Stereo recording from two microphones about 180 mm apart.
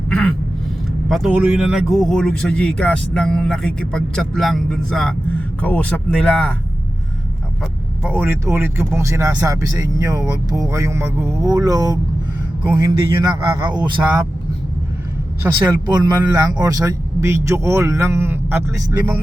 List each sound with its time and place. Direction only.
0.1 s a sound: 5° left (ahead or behind)
1.1 s speech: 5° right (ahead or behind)
8.0 s speech: 10° right (ahead or behind)
15.5 s speech: 25° right (ahead or behind)